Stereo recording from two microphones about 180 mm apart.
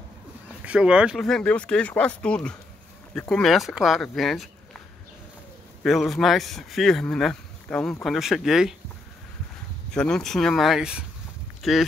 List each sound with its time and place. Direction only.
0.7 s speech: 5° right (ahead or behind)
5.9 s speech: centre (ahead or behind)
9.8 s speech: 5° left (ahead or behind)